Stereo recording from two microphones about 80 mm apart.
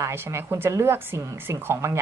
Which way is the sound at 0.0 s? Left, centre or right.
Right.